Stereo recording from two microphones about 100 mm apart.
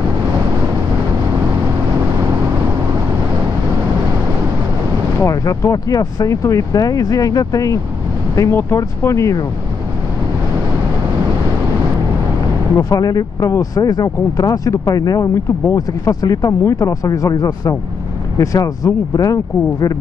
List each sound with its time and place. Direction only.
5.2 s speech: 35° left (ahead or behind)
8.4 s speech: 25° left (ahead or behind)
12.7 s speech: 40° left (ahead or behind)